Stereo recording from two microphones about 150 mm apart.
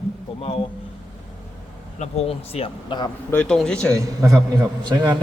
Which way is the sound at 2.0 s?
45° left (ahead or behind).